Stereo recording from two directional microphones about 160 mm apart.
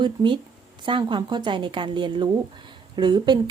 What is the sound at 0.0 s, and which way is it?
A woman's voice, 30° right (ahead or behind).